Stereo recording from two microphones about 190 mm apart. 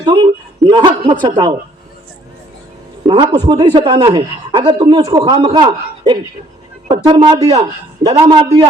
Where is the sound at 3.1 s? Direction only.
25° right (ahead or behind).